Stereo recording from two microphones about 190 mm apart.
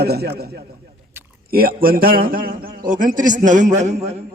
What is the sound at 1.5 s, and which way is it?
A man's voice, 50° right (ahead or behind).